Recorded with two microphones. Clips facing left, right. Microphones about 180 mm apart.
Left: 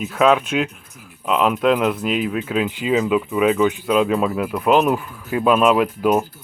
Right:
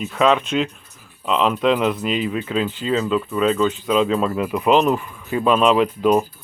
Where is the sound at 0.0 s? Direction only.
5° left (ahead or behind).